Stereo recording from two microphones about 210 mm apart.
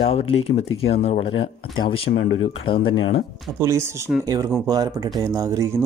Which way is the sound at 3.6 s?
10° right (ahead or behind).